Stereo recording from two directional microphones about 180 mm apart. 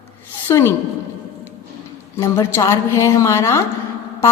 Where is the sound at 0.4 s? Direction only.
15° left (ahead or behind).